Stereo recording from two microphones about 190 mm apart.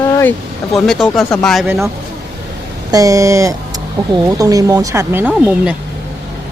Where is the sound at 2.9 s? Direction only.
20° right (ahead or behind).